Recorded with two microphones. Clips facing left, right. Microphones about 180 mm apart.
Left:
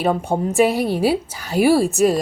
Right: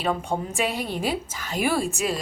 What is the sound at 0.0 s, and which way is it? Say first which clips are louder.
A woman's voice: left 7 dB; 40° left (ahead or behind).